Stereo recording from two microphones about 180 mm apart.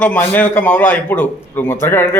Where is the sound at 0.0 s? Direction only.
10° left (ahead or behind).